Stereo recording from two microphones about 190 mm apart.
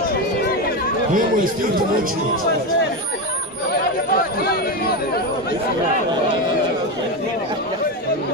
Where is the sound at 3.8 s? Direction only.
55° left (ahead or behind).